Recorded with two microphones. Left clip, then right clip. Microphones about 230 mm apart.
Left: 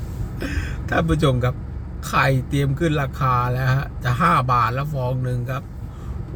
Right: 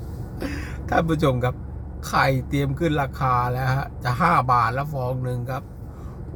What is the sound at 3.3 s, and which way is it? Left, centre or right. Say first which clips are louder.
Speech: left 1 dB; right.